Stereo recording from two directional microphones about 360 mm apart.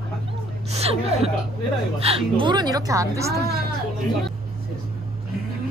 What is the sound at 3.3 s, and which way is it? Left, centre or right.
Speech, right.